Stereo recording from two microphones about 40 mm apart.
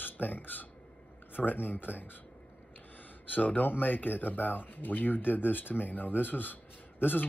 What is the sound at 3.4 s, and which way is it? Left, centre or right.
Speech, left.